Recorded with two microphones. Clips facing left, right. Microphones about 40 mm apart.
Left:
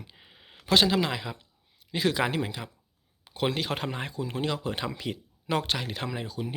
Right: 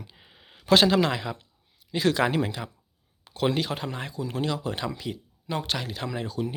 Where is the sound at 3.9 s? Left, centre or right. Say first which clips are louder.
Even; left.